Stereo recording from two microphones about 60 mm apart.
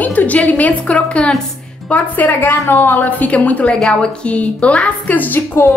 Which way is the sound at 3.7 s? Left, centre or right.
Centre.